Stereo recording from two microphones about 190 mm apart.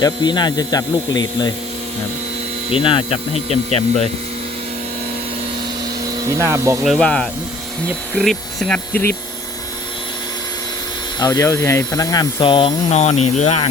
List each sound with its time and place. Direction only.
0.0 s speech: 20° left (ahead or behind)
2.6 s speech: 30° left (ahead or behind)
6.2 s speech: 15° right (ahead or behind)
6.8 s speech: centre (ahead or behind)
11.2 s speech: 20° left (ahead or behind); by 13.7 s 35° left (ahead or behind)